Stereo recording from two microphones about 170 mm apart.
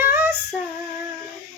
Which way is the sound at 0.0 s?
10° right (ahead or behind).